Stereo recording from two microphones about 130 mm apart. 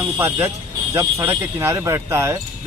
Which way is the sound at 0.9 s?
20° right (ahead or behind).